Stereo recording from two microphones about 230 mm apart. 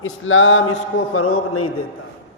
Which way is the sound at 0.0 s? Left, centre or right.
Left.